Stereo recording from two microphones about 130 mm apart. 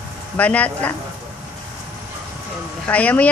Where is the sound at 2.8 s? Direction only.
10° left (ahead or behind).